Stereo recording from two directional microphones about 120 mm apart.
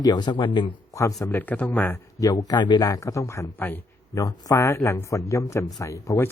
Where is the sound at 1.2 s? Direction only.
15° left (ahead or behind).